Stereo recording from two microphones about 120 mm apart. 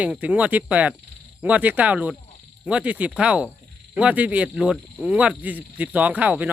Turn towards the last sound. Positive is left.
turn(degrees=-10)  # may be behind; listen again after turning